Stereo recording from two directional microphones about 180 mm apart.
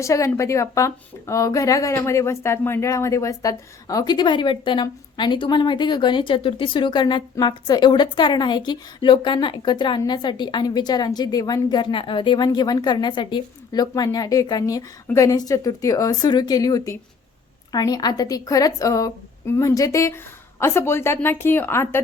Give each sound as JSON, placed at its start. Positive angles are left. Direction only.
{"t": 0.0, "sound": "a woman's voice", "side_deg": 15}